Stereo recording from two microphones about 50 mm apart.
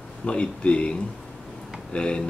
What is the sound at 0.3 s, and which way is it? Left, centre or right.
Speech, left.